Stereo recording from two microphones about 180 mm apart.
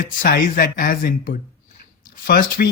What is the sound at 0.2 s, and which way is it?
Speech, 50° left (ahead or behind).